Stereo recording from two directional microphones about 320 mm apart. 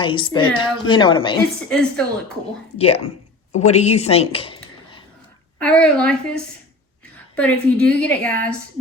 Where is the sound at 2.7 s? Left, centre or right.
Centre.